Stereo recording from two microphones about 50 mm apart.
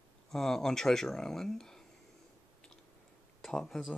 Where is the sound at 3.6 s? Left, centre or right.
Centre.